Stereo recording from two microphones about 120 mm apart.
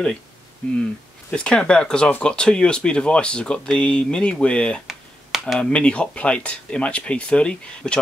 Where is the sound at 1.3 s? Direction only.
10° left (ahead or behind).